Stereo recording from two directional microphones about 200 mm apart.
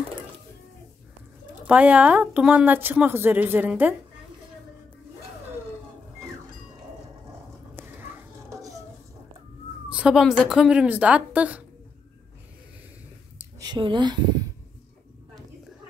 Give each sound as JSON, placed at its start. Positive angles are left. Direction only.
{"t": 1.7, "sound": "speech", "side_deg": -5}
{"t": 7.7, "sound": "a sound", "side_deg": -15}
{"t": 9.8, "sound": "speech", "side_deg": -5}
{"t": 13.6, "sound": "speech", "side_deg": -20}